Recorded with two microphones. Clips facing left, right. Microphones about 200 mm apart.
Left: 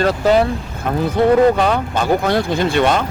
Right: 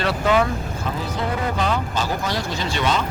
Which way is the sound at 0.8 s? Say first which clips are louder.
Left 13 dB; 60° left (ahead or behind).